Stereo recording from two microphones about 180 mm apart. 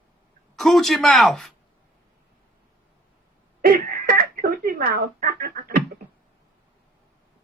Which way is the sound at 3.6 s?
55° right (ahead or behind).